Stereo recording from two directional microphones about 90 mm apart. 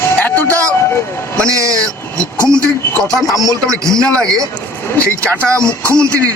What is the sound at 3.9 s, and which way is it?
Speech, 5° left (ahead or behind).